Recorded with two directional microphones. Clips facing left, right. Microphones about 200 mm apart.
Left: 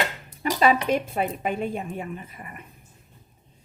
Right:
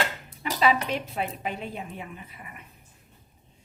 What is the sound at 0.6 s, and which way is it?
A woman's voice, 50° left (ahead or behind).